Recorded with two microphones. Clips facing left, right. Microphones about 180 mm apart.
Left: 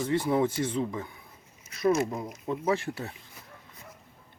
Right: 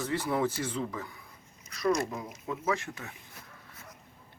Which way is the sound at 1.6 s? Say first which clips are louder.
Left 4 dB; 25° left (ahead or behind).